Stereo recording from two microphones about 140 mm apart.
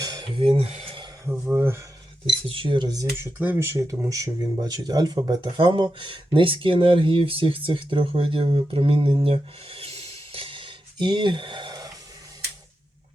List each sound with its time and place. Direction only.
0.0 s a sound: 30° right (ahead or behind)
1.2 s speech: 15° right (ahead or behind)
2.2 s speech: 40° right (ahead or behind)
3.3 s speech: 15° right (ahead or behind); by 11.9 s 30° right (ahead or behind)